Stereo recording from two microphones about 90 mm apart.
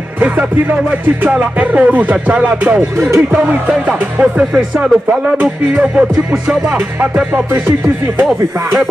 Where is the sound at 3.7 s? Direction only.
15° right (ahead or behind).